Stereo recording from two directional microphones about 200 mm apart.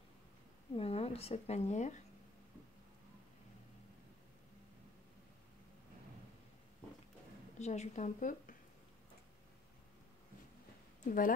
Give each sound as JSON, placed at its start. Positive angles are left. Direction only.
{"t": 0.7, "sound": "a woman's voice", "side_deg": 30}
{"t": 7.5, "sound": "a woman's voice", "side_deg": 35}
{"t": 11.1, "sound": "a woman's voice", "side_deg": 45}